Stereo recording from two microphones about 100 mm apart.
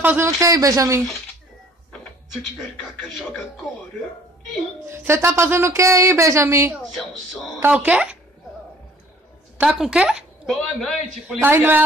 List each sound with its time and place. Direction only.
0.0 s speech: 20° right (ahead or behind)
0.4 s a man's voice: 35° right (ahead or behind)
3.0 s a man's voice: 5° right (ahead or behind)
4.8 s speech: 25° right (ahead or behind)
7.6 s a woman's voice: 15° right (ahead or behind)
9.6 s a woman's voice: 10° right (ahead or behind)
11.4 s speech: 20° right (ahead or behind)